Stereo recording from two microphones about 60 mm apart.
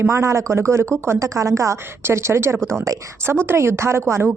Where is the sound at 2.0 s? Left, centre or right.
Right.